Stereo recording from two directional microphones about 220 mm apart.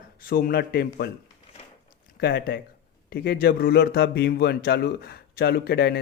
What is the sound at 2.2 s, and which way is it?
Speech, 45° left (ahead or behind).